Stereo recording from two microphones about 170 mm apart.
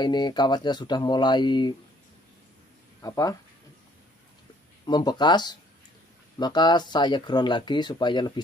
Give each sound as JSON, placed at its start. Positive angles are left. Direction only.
{"t": 0.0, "sound": "speech", "side_deg": 25}
{"t": 3.0, "sound": "speech", "side_deg": 20}
{"t": 4.8, "sound": "speech", "side_deg": 25}